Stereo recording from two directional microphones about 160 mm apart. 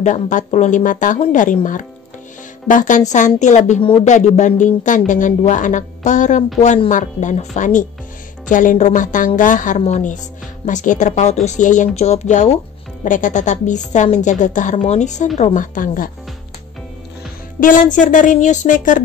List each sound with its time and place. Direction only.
0.0 s a woman's voice: 50° left (ahead or behind)
17.6 s a woman's voice: 55° left (ahead or behind)